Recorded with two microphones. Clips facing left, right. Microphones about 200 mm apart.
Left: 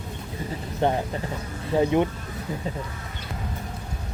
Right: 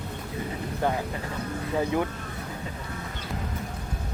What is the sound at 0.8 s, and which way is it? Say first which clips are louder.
Speech: left 4 dB; 25° left (ahead or behind).